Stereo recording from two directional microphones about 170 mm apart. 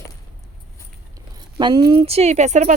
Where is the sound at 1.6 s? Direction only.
25° right (ahead or behind); by 2.8 s 45° right (ahead or behind).